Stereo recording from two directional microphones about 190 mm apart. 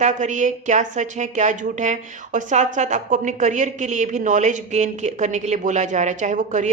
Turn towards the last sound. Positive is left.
turn(degrees=-40)  # may be behind; listen again after turning